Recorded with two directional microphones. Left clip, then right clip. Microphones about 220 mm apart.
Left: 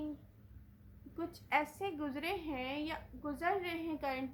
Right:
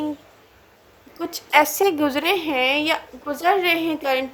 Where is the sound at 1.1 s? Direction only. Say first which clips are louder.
Right 18 dB; 40° right (ahead or behind).